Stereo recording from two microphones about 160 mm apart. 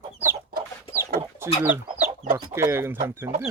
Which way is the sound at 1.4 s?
15° right (ahead or behind).